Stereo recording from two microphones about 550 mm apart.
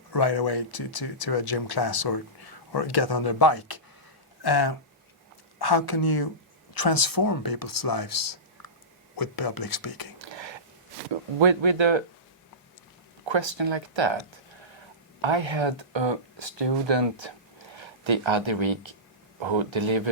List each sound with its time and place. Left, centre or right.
0.1 s speech: left
10.2 s a sound: right
11.3 s speech: right
13.2 s speech: right
15.2 s speech: right